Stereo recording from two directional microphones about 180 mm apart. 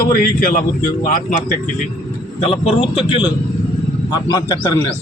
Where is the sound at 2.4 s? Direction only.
30° left (ahead or behind).